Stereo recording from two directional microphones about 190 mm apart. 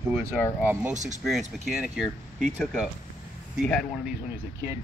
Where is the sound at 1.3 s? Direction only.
Centre (ahead or behind).